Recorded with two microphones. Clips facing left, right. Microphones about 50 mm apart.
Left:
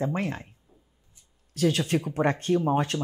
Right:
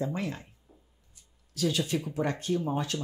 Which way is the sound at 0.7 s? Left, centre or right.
Right.